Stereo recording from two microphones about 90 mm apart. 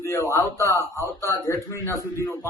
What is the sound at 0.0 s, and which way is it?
Speech, 35° left (ahead or behind).